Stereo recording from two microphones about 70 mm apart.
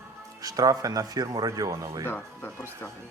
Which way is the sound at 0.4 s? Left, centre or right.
Right.